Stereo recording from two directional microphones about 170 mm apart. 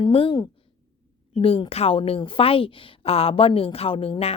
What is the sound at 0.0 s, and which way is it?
A woman's voice, 30° left (ahead or behind).